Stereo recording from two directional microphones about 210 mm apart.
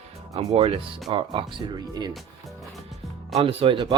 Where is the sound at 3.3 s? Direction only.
25° right (ahead or behind).